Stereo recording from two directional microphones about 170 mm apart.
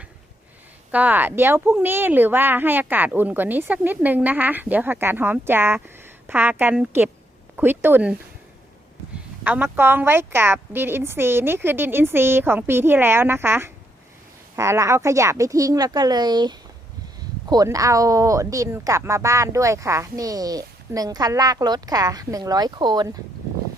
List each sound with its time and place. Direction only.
0.9 s speech: 10° right (ahead or behind)
9.4 s speech: 10° right (ahead or behind)